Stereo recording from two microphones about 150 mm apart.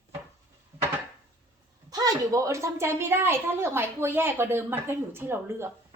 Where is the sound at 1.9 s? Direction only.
25° right (ahead or behind).